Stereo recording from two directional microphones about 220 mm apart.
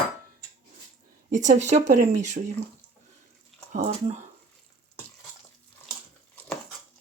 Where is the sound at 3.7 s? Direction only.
30° right (ahead or behind).